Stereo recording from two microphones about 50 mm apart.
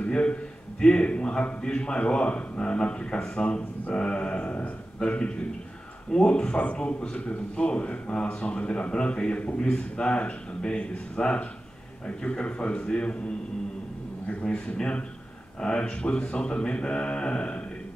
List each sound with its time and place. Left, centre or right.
0.0 s a man's voice: left
14.2 s a man's voice: left